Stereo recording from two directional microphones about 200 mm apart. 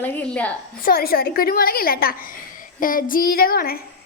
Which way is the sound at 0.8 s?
45° left (ahead or behind).